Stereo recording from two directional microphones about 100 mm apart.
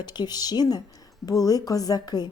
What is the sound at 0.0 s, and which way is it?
A woman's voice, 45° left (ahead or behind).